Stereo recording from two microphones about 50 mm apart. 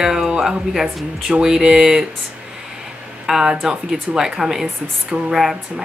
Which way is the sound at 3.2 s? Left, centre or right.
Centre.